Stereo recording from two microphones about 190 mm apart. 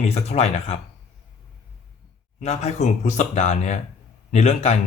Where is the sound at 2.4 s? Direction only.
35° left (ahead or behind).